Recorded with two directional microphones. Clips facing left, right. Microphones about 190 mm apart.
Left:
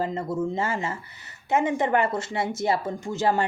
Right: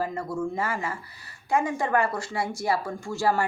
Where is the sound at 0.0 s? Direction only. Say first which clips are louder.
Left 2 dB; 25° left (ahead or behind).